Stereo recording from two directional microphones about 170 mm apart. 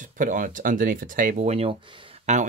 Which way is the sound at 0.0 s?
50° right (ahead or behind).